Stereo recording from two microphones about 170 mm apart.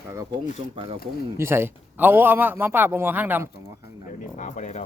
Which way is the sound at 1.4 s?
15° right (ahead or behind).